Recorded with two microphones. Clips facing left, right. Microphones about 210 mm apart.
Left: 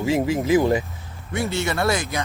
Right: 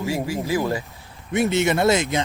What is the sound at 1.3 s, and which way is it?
Speech, 20° right (ahead or behind).